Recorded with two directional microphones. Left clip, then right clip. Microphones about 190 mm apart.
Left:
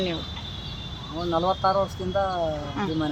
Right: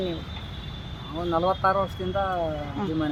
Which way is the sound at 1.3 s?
15° right (ahead or behind).